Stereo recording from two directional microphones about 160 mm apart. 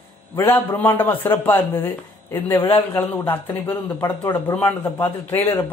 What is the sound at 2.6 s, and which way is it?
Speech, 30° left (ahead or behind).